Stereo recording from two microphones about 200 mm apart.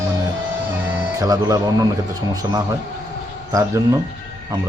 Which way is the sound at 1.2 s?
20° right (ahead or behind).